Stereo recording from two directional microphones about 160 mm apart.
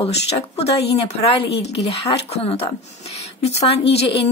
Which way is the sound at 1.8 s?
40° left (ahead or behind).